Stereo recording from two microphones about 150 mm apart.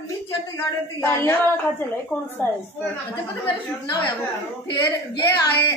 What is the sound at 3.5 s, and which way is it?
A woman's voice, 30° left (ahead or behind).